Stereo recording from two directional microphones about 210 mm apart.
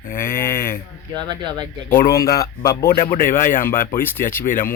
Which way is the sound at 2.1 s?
15° left (ahead or behind).